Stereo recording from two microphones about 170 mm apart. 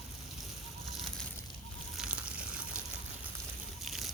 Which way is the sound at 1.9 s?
5° right (ahead or behind).